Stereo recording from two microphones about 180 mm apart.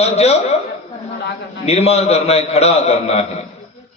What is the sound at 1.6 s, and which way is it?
A man's voice, 35° left (ahead or behind).